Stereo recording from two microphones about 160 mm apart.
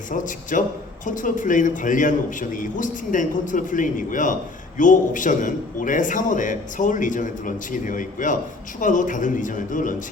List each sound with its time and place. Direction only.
0.1 s a man's voice: 55° left (ahead or behind)